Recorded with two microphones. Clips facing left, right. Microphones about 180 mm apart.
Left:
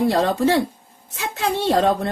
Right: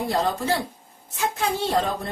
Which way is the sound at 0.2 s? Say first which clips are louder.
Left 6 dB; 75° left (ahead or behind).